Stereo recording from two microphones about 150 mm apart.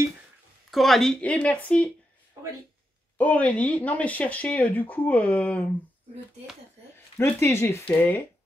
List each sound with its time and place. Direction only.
0.7 s speech: centre (ahead or behind)
3.2 s speech: 10° left (ahead or behind)
7.2 s speech: 15° left (ahead or behind)